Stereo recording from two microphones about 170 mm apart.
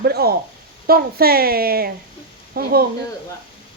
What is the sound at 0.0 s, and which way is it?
A woman's voice, 65° right (ahead or behind).